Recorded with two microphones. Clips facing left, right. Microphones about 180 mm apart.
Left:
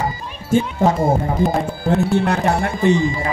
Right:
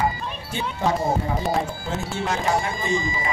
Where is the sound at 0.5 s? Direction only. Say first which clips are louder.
Left 8 dB; 50° left (ahead or behind).